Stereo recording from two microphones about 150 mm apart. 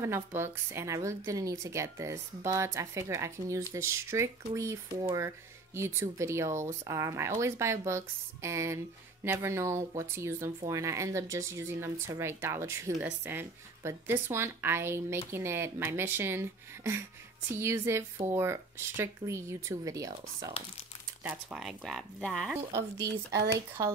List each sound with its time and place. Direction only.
0.0 s a woman's voice: 15° right (ahead or behind)
21.2 s speech: 10° right (ahead or behind)
22.5 s a woman's voice: 20° right (ahead or behind)